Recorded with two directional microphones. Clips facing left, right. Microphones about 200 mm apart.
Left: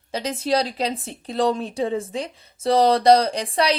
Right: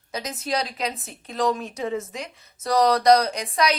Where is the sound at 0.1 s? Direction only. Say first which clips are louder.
Left 5 dB; 30° left (ahead or behind).